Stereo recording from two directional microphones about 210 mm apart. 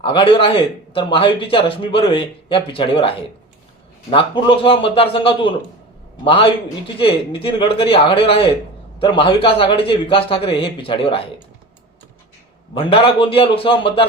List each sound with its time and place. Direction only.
0.0 s a man's voice: 25° left (ahead or behind)
12.7 s a man's voice: 25° left (ahead or behind)